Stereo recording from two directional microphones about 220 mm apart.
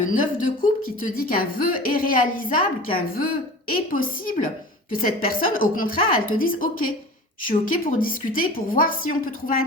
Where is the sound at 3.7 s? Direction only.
40° left (ahead or behind).